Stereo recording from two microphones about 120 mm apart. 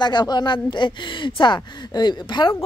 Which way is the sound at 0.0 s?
35° left (ahead or behind).